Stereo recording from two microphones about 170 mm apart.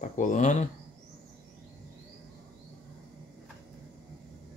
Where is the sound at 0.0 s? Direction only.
50° left (ahead or behind).